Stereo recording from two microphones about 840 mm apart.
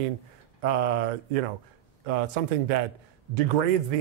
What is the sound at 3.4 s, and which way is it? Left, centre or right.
Speech, right.